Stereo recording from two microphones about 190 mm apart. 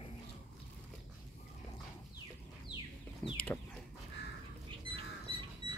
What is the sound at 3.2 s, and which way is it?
Chicken, 5° left (ahead or behind).